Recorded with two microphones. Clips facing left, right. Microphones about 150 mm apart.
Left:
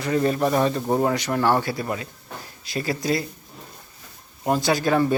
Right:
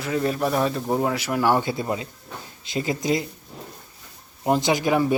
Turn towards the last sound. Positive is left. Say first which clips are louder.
# even
turn(degrees=-15)  # may be behind; listen again after turning